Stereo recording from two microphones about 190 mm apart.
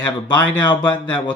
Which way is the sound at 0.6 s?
25° left (ahead or behind).